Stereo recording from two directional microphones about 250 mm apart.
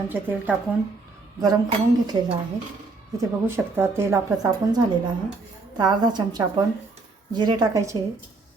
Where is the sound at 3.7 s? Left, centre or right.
Centre.